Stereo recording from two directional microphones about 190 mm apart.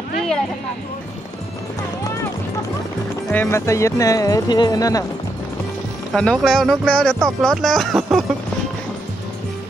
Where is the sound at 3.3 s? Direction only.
10° left (ahead or behind).